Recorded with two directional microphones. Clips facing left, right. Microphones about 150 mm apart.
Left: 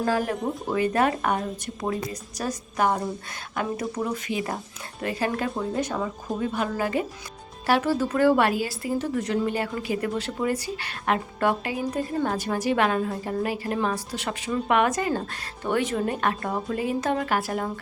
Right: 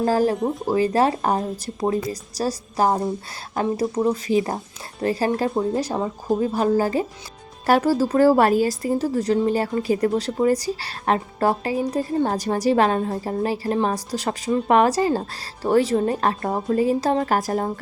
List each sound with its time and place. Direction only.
0.0 s speech: 35° right (ahead or behind)